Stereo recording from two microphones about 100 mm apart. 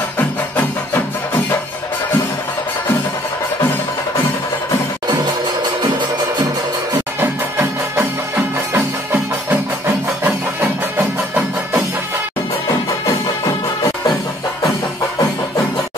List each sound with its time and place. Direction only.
0.6 s music: 20° left (ahead or behind)
7.2 s music: 25° right (ahead or behind)
11.0 s music: 20° right (ahead or behind)